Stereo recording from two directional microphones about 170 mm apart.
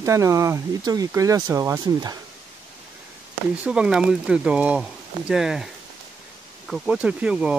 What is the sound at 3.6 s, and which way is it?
Speech, 5° right (ahead or behind).